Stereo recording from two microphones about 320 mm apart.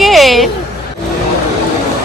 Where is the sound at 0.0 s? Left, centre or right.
Centre.